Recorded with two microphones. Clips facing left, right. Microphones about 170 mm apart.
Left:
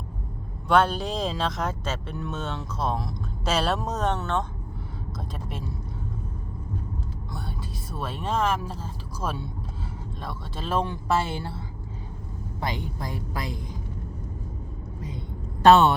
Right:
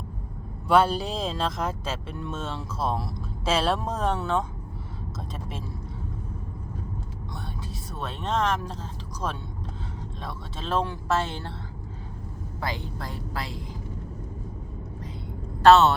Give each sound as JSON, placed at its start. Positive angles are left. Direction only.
{"t": 0.7, "sound": "speech", "side_deg": -5}
{"t": 5.5, "sound": "speech", "side_deg": 0}
{"t": 7.9, "sound": "speech", "side_deg": 5}
{"t": 10.8, "sound": "a woman's voice", "side_deg": 15}
{"t": 12.5, "sound": "a woman's voice", "side_deg": 20}
{"t": 15.6, "sound": "a woman's voice", "side_deg": 15}